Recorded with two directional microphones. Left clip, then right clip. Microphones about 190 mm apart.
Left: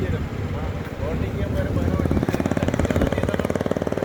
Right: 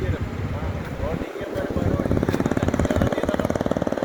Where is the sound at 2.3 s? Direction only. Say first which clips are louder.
Even; 55° left (ahead or behind).